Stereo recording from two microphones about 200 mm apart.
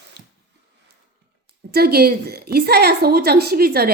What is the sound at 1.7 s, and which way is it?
A woman's voice, 50° right (ahead or behind).